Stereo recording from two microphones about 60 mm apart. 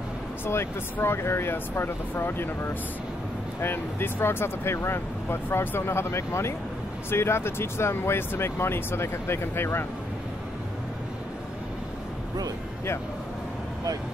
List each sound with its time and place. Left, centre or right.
0.9 s speech: left